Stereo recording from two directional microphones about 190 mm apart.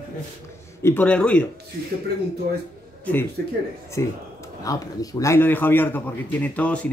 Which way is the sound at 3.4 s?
55° right (ahead or behind).